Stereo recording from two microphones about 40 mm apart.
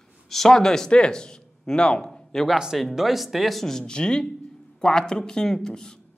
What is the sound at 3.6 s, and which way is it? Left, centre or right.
Speech, centre.